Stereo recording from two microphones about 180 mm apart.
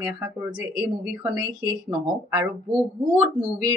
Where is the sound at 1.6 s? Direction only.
25° right (ahead or behind).